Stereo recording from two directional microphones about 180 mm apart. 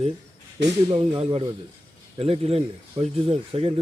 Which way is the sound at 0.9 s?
25° right (ahead or behind).